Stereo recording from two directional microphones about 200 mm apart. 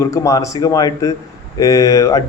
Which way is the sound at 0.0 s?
15° left (ahead or behind).